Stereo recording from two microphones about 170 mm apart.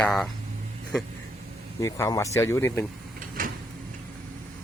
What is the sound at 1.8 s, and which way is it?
Speech, 15° left (ahead or behind).